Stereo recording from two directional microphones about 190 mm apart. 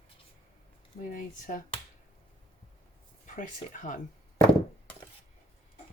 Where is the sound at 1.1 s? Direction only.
45° left (ahead or behind).